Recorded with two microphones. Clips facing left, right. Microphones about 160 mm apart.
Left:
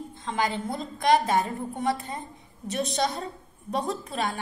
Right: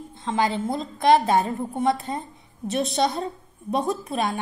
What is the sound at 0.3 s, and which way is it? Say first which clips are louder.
A woman's voice: right 5 dB; 25° right (ahead or behind).